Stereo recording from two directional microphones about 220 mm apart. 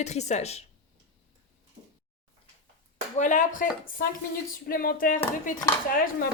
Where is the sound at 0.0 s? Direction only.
30° left (ahead or behind).